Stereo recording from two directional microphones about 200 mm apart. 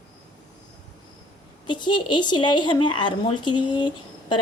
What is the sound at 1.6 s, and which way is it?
A woman's voice, 20° left (ahead or behind).